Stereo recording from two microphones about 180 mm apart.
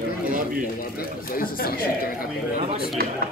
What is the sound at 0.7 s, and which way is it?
Speech, 55° left (ahead or behind).